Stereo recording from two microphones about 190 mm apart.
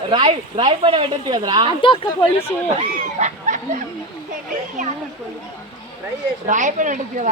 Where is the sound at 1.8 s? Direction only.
25° left (ahead or behind).